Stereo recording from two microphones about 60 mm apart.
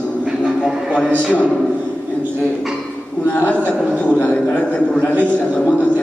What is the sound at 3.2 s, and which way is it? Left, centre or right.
A man's voice, left.